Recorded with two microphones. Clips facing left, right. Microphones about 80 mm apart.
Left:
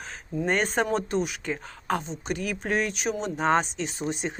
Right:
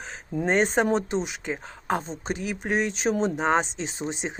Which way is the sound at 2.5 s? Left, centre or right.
Centre.